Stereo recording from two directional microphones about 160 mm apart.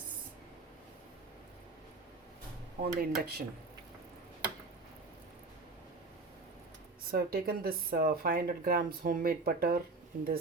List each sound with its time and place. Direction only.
3.0 s speech: 75° right (ahead or behind)
7.1 s speech: 65° right (ahead or behind)
10.1 s speech: 55° right (ahead or behind)